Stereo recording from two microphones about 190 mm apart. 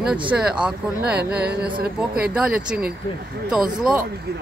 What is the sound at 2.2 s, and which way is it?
Speech, 5° right (ahead or behind).